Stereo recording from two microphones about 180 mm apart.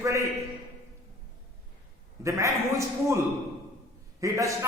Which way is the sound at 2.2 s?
15° right (ahead or behind).